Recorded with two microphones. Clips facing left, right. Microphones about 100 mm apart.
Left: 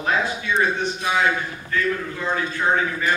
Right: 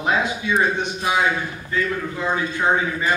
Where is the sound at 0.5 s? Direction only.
15° right (ahead or behind).